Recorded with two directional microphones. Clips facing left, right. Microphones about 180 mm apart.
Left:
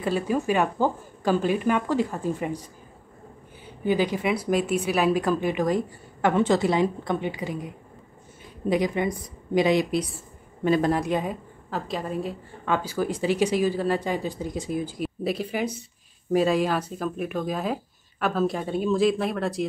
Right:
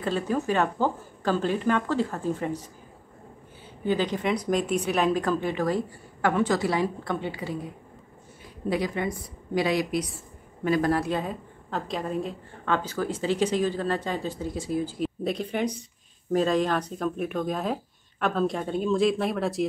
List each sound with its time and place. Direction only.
0.0 s a woman's voice: 10° left (ahead or behind)
3.8 s a woman's voice: 10° left (ahead or behind)
11.7 s a woman's voice: 5° left (ahead or behind)
15.2 s speech: 5° left (ahead or behind)